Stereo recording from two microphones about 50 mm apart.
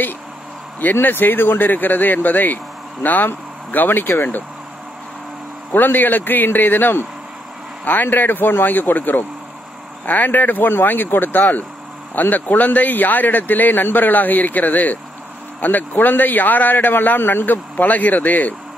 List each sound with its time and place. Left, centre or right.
1.0 s a man's voice: left
5.8 s a man's voice: left